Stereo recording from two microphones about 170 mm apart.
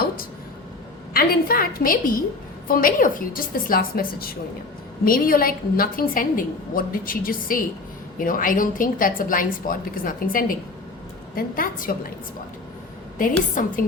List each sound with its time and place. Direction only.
1.1 s a woman's voice: 60° left (ahead or behind)
13.6 s a woman's voice: 50° left (ahead or behind)